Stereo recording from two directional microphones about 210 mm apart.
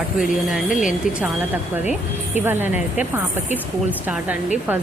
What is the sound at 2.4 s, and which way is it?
A woman's voice, 10° right (ahead or behind).